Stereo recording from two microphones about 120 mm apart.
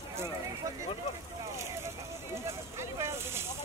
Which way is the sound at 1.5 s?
25° right (ahead or behind).